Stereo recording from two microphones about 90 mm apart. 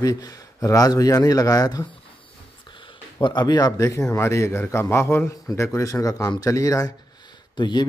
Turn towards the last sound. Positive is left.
turn(degrees=55)  # may be behind; listen again after turning